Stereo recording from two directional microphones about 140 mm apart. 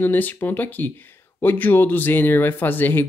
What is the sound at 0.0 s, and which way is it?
Speech, 15° left (ahead or behind).